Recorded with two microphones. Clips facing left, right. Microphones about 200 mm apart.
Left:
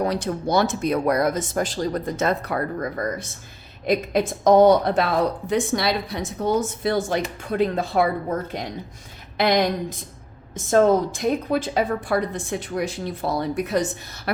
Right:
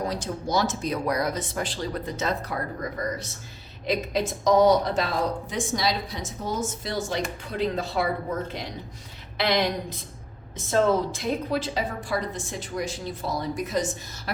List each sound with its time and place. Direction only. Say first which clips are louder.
0.0 s a woman's voice: left 6 dB; 65° left (ahead or behind)
9.4 s a woman's voice: left 4 dB; 45° left (ahead or behind)